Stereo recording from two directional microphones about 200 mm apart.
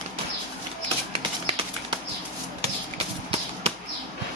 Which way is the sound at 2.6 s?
30° right (ahead or behind).